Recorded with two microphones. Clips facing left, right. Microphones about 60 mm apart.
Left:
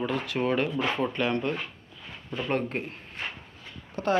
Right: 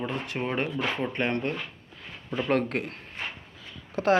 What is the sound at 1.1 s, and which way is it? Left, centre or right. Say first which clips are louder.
Speech: left 1 dB; right.